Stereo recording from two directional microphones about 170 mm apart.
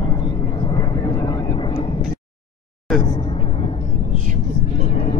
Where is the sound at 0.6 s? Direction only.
25° left (ahead or behind).